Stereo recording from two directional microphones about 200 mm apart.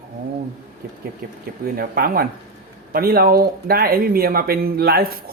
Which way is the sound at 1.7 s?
45° right (ahead or behind).